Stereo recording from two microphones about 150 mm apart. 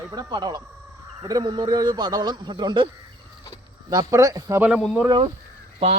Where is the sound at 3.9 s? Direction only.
25° right (ahead or behind).